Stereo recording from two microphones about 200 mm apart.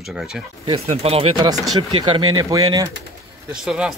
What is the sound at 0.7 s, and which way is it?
Speech, 30° right (ahead or behind).